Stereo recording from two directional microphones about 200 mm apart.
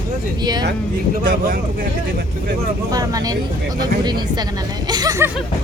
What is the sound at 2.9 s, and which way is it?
A man's voice, 20° right (ahead or behind).